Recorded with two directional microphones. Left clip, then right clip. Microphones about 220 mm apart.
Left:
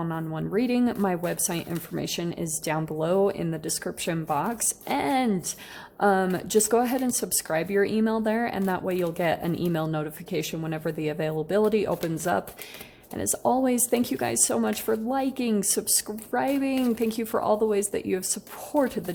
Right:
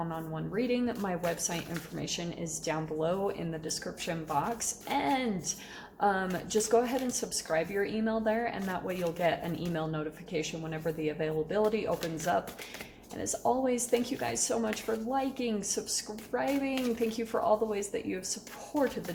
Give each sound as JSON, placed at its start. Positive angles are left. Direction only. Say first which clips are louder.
{"t": 0.0, "sound": "speech", "louder": "left 5 dB", "side_deg": 50}